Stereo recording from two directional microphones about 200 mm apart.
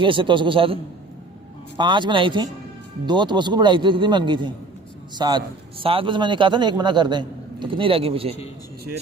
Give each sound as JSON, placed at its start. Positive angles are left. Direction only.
{"t": 0.0, "sound": "a man's voice", "side_deg": -25}
{"t": 1.8, "sound": "a man's voice", "side_deg": -25}